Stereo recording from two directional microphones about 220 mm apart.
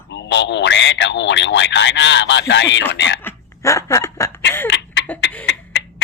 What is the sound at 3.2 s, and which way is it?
Snicker, 15° left (ahead or behind).